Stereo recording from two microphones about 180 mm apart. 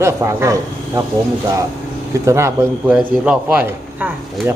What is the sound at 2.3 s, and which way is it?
A man's voice, 15° right (ahead or behind).